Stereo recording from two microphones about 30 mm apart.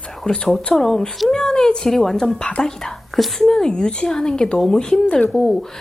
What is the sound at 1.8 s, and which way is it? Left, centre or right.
A woman's voice, centre.